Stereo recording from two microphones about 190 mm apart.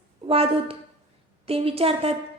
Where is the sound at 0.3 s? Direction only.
30° right (ahead or behind).